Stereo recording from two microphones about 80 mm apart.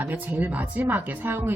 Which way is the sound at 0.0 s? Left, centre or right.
Right.